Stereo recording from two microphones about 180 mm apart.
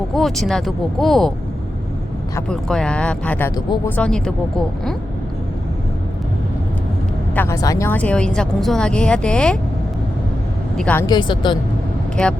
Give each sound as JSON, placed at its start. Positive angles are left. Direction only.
{"t": 0.1, "sound": "a woman's voice", "side_deg": 0}
{"t": 2.5, "sound": "a woman's voice", "side_deg": 5}
{"t": 7.3, "sound": "a woman's voice", "side_deg": 15}
{"t": 10.8, "sound": "a woman's voice", "side_deg": 5}
{"t": 11.0, "sound": "a woman's voice", "side_deg": 25}
{"t": 12.2, "sound": "a woman's voice", "side_deg": 5}